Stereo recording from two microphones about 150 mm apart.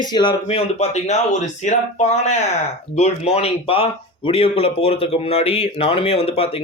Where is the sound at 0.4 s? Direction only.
45° left (ahead or behind).